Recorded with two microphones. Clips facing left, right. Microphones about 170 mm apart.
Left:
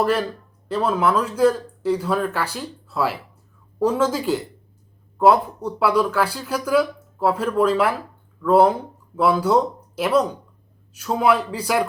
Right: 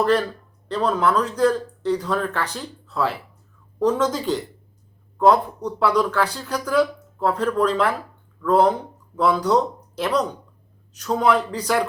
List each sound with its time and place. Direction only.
0.0 s speech: 10° left (ahead or behind)